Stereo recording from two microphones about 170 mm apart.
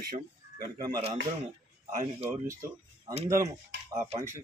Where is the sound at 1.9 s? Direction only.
40° right (ahead or behind).